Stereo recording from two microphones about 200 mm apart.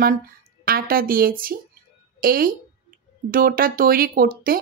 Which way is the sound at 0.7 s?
45° right (ahead or behind).